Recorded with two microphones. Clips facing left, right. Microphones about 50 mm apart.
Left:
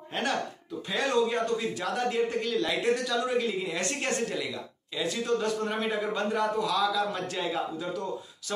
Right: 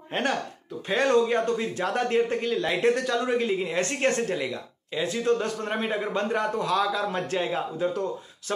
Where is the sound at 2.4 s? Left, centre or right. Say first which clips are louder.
Right 4 dB; right.